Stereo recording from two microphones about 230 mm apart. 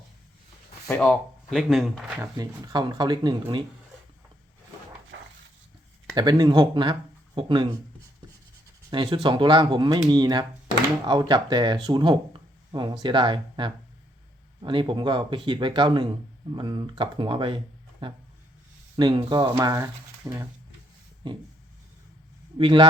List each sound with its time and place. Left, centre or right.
0.9 s speech: centre
2.4 s speech: centre
5.1 s a sound: right
6.1 s speech: centre
8.9 s speech: centre
22.5 s speech: right